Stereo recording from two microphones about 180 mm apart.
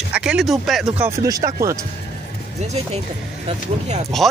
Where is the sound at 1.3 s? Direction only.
20° right (ahead or behind).